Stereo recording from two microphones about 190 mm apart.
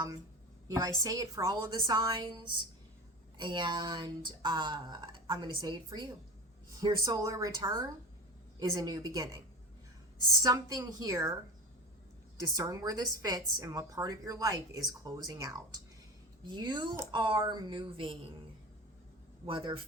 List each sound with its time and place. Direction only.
0.7 s a woman's voice: 20° right (ahead or behind)
12.5 s a woman's voice: 20° right (ahead or behind)
19.5 s a woman's voice: 30° right (ahead or behind)